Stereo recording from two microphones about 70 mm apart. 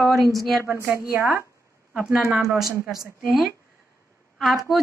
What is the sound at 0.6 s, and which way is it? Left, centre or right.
Speech, right.